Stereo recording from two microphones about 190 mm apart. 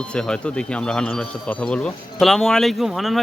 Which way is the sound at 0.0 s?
5° left (ahead or behind).